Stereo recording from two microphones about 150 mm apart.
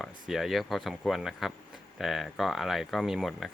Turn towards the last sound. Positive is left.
turn(degrees=0)  # may be behind; listen again after turning